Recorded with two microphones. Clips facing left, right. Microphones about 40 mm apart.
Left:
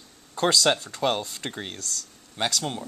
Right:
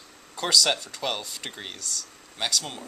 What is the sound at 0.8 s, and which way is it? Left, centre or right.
Speech, left.